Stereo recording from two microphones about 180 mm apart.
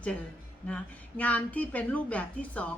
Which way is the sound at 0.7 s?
10° left (ahead or behind).